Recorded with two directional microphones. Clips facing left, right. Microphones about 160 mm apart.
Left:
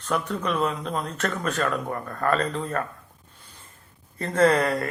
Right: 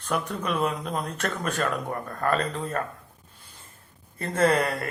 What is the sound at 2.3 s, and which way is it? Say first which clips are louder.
Speech: left 2 dB; 25° right (ahead or behind).